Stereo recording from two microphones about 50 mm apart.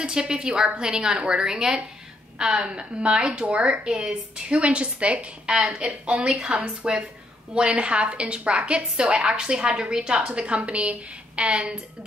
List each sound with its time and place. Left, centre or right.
0.0 s a woman's voice: centre